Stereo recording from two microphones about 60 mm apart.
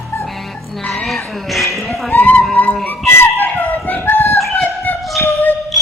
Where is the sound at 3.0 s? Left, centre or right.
Left.